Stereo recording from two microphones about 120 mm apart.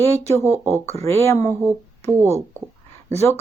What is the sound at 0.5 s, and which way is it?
Speech, 20° right (ahead or behind).